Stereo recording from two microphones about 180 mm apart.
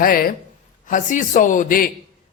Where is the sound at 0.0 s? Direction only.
55° left (ahead or behind).